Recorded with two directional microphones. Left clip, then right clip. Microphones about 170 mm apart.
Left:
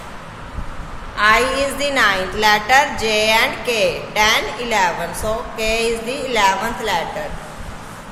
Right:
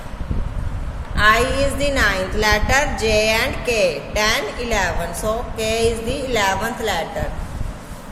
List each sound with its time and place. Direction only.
1.1 s a woman's voice: 20° right (ahead or behind)